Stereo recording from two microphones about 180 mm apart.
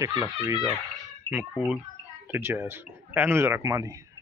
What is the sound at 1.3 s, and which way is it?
Speech, 5° right (ahead or behind).